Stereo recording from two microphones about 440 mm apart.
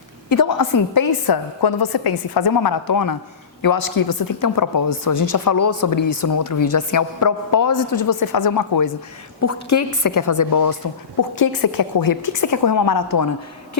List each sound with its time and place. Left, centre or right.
0.3 s a woman's voice: left
9.4 s a woman's voice: left